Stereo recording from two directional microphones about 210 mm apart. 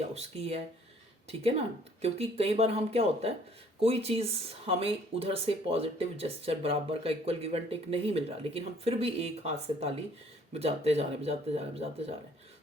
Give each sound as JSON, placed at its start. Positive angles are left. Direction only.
{"t": 0.1, "sound": "speech", "side_deg": -30}
{"t": 2.0, "sound": "speech", "side_deg": -30}